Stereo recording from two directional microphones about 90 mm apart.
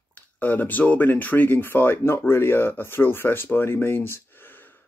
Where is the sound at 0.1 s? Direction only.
20° left (ahead or behind).